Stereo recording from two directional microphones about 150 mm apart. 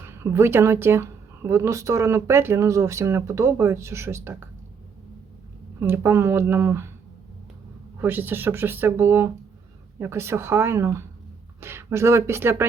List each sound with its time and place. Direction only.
0.0 s speech: 15° right (ahead or behind)
5.8 s speech: 15° right (ahead or behind)
8.0 s speech: 15° right (ahead or behind)